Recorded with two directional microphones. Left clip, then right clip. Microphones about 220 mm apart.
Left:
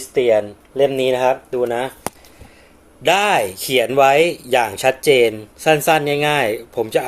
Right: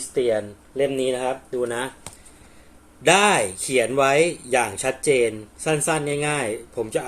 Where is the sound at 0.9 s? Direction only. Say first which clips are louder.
Left 7 dB; 5° left (ahead or behind).